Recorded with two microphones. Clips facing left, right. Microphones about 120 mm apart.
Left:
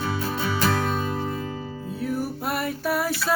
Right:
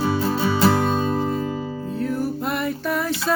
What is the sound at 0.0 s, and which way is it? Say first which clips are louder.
Music: right 6 dB; 25° right (ahead or behind).